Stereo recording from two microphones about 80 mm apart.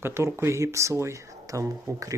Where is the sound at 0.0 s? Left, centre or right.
Right.